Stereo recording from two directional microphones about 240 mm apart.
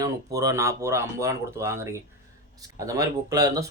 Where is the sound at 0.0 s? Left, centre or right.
Centre.